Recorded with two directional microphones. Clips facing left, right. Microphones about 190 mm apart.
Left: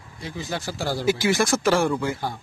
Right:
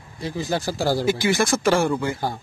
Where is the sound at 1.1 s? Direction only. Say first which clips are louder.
Right 1 dB; 5° left (ahead or behind).